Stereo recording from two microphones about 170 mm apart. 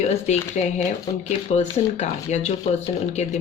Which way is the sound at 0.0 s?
40° left (ahead or behind).